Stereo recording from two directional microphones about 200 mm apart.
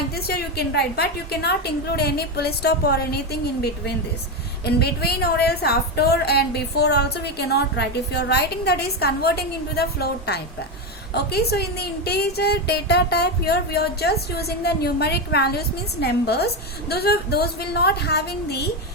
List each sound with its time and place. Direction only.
0.2 s a woman's voice: 50° left (ahead or behind)